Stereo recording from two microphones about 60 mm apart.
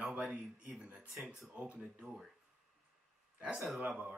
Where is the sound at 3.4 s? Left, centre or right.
Centre.